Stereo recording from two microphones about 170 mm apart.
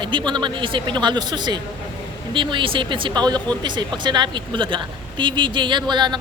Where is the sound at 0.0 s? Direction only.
30° right (ahead or behind).